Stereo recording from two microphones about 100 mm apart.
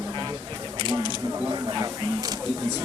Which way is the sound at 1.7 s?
40° right (ahead or behind).